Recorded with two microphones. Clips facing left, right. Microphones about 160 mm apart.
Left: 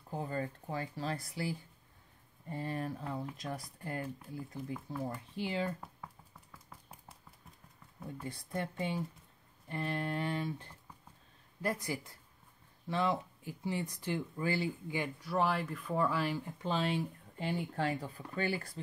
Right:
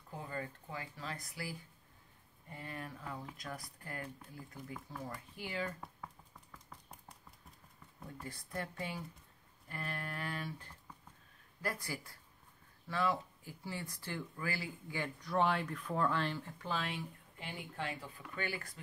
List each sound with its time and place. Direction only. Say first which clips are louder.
0.1 s speech: left 6 dB; 30° left (ahead or behind)
6.5 s a sound: left 1 dB; 5° left (ahead or behind)
8.2 s speech: left 4 dB; 20° left (ahead or behind)
15.1 s speech: even; 5° left (ahead or behind); by 18.8 s 30° left (ahead or behind)